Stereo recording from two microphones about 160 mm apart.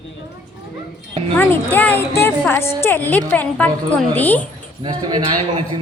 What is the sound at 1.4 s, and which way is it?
A woman's voice, 10° left (ahead or behind).